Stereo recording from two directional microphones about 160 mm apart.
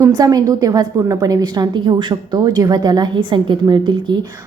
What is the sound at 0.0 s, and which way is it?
A woman's voice, 25° right (ahead or behind).